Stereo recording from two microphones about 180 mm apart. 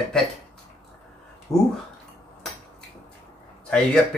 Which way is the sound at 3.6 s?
5° left (ahead or behind).